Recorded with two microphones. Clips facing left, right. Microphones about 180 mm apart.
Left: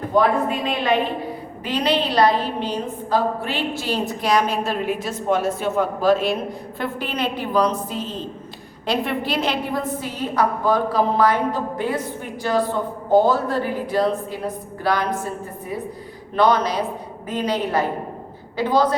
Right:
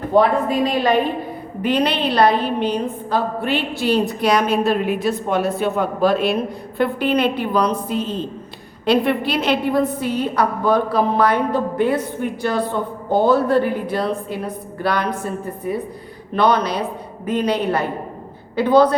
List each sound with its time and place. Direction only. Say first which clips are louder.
0.1 s a woman's voice: right 3 dB; 35° right (ahead or behind)
1.6 s a woman's voice: right 3 dB; 55° right (ahead or behind)
16.3 s a woman's voice: right 1 dB; 60° right (ahead or behind)